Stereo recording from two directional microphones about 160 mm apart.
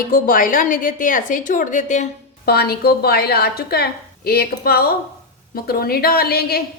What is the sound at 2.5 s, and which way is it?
A woman's voice, 80° left.